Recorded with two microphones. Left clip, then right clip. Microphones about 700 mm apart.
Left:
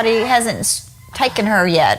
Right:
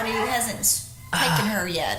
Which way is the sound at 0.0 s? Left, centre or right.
Left.